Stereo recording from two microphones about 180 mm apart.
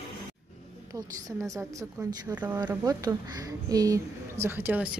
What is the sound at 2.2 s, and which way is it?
A woman's voice, 10° right (ahead or behind).